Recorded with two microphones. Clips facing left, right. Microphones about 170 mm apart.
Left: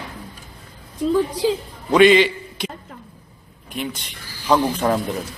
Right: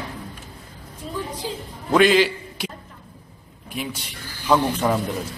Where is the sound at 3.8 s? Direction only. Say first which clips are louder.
Left 2 dB; 5° right (ahead or behind).